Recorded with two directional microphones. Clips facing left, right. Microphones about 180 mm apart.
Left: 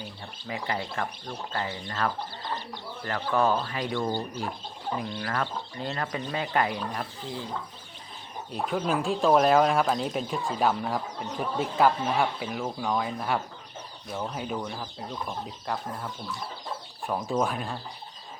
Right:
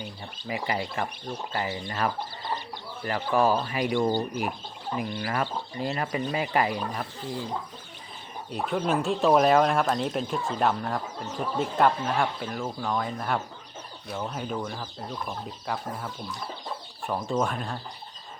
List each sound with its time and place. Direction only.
0.0 s speech: 5° right (ahead or behind)
8.5 s speech: centre (ahead or behind)
17.1 s speech: centre (ahead or behind)